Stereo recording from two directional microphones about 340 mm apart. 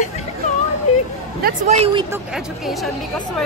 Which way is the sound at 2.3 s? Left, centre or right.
Centre.